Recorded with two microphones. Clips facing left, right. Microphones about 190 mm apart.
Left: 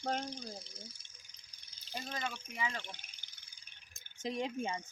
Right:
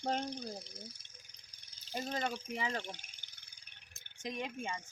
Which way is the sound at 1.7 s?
45° right (ahead or behind).